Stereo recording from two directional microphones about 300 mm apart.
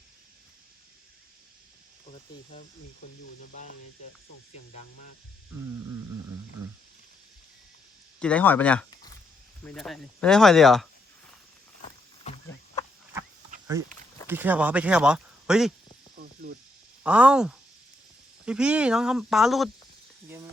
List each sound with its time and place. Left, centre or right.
2.1 s speech: left
8.2 s speech: centre
14.3 s speech: centre
16.1 s snake: right
17.0 s speech: centre